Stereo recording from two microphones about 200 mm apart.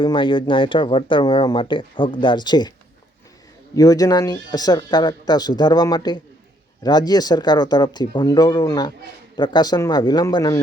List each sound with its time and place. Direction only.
0.0 s speech: 25° left (ahead or behind)
3.8 s speech: 15° left (ahead or behind)